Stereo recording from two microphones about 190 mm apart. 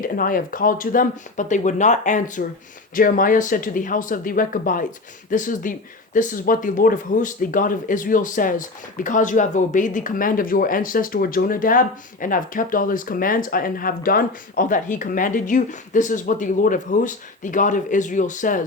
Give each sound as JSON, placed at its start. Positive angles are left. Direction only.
{"t": 0.0, "sound": "speech", "side_deg": 45}